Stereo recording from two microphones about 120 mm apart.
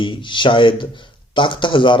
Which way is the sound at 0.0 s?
45° left (ahead or behind).